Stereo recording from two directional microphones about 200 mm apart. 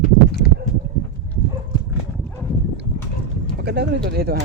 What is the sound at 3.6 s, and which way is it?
Speech, 55° right (ahead or behind).